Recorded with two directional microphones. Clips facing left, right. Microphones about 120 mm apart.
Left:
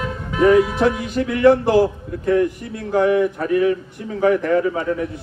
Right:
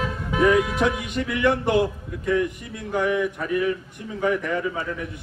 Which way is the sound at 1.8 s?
45° left (ahead or behind).